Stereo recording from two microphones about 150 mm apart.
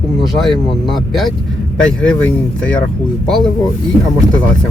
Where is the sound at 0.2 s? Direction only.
Centre (ahead or behind).